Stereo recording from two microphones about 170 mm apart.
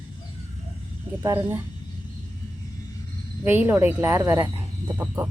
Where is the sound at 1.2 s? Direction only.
15° right (ahead or behind).